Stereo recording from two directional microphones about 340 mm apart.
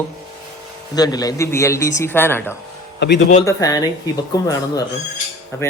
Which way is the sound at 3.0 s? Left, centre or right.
Left.